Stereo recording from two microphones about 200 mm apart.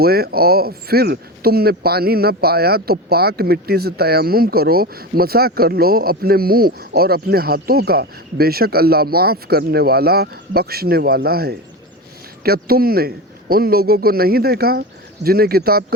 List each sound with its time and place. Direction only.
0.0 s speech: 50° right (ahead or behind)